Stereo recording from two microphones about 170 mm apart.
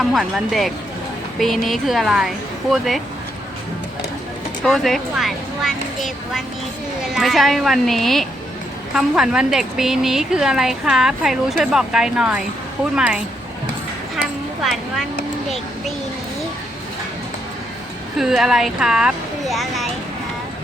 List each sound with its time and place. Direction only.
0.0 s a woman's voice: centre (ahead or behind)
4.6 s a woman's voice: centre (ahead or behind)
18.2 s speech: centre (ahead or behind)